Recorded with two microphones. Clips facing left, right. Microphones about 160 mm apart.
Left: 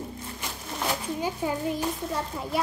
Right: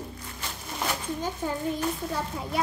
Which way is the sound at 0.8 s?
10° left (ahead or behind).